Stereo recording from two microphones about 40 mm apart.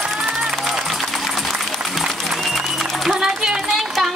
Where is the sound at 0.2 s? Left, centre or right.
Centre.